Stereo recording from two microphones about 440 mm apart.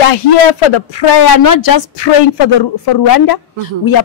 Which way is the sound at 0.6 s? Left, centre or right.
Left.